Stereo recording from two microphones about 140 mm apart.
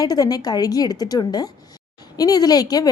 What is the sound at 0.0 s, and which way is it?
Speech, 25° left (ahead or behind).